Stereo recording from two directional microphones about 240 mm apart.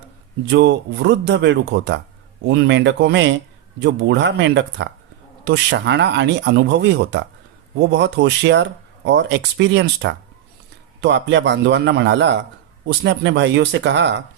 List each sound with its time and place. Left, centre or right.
0.4 s speech: right